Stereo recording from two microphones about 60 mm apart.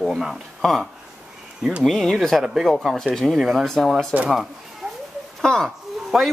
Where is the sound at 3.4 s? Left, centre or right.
Centre.